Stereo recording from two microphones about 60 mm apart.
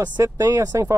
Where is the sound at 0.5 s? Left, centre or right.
Right.